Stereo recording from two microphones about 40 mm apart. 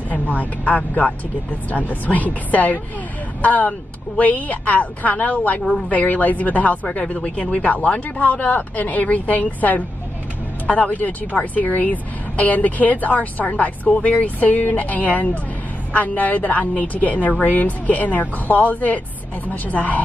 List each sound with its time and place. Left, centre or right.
0.1 s a woman's voice: left
5.6 s speech: centre
5.9 s a woman's voice: left